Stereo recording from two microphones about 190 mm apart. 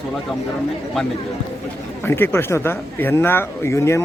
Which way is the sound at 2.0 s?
10° left (ahead or behind).